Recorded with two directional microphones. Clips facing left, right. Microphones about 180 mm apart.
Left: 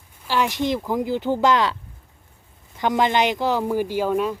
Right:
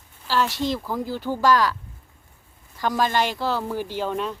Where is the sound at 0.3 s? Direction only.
15° left (ahead or behind).